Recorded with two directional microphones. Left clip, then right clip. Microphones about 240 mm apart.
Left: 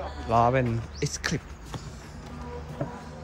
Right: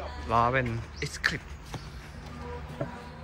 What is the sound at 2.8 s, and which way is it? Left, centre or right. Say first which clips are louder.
Music: left 1 dB; centre.